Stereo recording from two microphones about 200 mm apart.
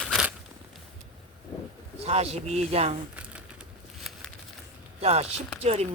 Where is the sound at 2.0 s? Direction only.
30° right (ahead or behind).